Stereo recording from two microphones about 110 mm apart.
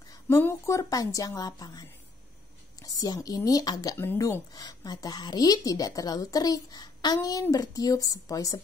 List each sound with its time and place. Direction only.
0.4 s a woman's voice: 25° left (ahead or behind)